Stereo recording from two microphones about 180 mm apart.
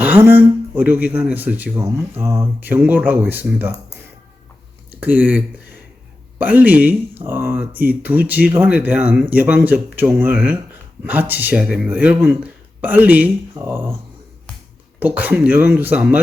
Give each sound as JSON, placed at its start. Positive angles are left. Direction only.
{"t": 0.0, "sound": "speech", "side_deg": -10}
{"t": 4.9, "sound": "speech", "side_deg": -10}
{"t": 6.4, "sound": "speech", "side_deg": -10}
{"t": 14.9, "sound": "speech", "side_deg": -10}